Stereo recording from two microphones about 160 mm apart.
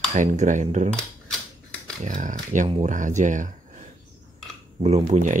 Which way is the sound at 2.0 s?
55° right (ahead or behind).